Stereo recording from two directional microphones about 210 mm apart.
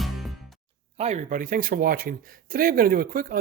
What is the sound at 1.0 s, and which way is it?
Speech, 35° right (ahead or behind).